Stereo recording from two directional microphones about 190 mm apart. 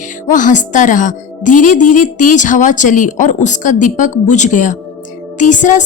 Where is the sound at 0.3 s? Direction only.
40° left (ahead or behind).